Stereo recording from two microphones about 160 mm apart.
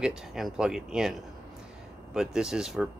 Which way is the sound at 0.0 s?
5° right (ahead or behind).